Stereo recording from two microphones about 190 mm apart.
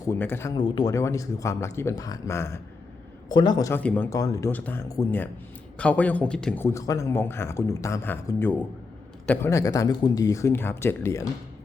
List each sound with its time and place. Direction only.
0.0 s a man's voice: 10° left (ahead or behind)
0.5 s a man's voice: 25° left (ahead or behind)